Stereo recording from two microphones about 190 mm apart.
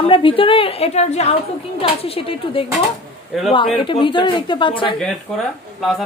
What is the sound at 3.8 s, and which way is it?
A woman's voice, 25° left (ahead or behind).